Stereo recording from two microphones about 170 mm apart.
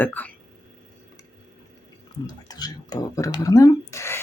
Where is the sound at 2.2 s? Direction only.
25° left (ahead or behind).